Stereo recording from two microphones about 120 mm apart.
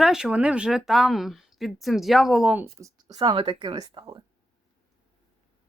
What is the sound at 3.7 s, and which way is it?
Speech, 35° right (ahead or behind).